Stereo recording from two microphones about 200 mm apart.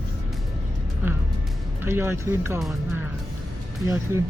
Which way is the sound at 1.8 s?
10° right (ahead or behind).